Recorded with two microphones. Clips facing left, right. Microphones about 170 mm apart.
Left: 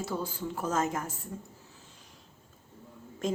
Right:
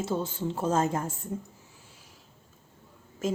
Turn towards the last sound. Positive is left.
turn(degrees=-5)  # may be behind; listen again after turning